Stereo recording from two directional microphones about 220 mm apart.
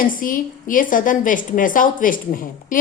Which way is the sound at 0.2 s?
40° left (ahead or behind).